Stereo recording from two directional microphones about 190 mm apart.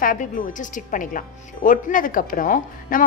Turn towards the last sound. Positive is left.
turn(degrees=45)  # may be behind; listen again after turning